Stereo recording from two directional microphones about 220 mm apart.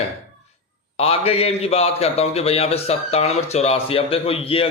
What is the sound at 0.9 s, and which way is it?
A man's voice, 25° left (ahead or behind).